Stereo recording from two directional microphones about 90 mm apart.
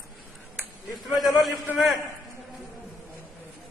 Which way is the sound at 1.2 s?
Centre (ahead or behind).